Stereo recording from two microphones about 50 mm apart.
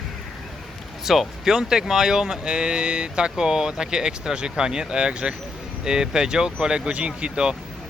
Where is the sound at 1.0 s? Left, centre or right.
Centre.